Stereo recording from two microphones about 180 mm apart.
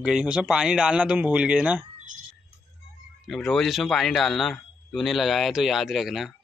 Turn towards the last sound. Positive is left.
turn(degrees=0)  # may be behind; listen again after turning